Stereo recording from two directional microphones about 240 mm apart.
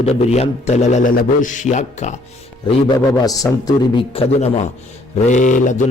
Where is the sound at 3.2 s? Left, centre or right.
Centre.